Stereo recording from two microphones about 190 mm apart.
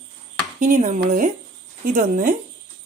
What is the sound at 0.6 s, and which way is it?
A woman's voice, 40° right (ahead or behind).